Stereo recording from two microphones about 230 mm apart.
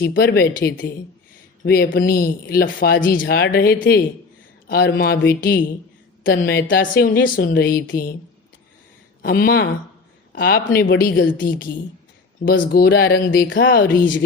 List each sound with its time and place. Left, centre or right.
0.0 s speech: left
9.2 s speech: left